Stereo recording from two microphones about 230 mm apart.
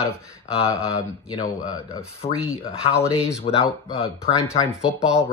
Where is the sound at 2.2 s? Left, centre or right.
Left.